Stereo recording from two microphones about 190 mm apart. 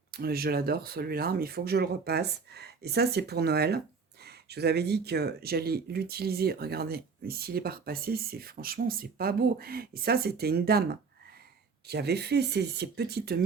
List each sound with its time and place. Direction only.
0.1 s speech: 55° right (ahead or behind)
11.9 s speech: 60° right (ahead or behind)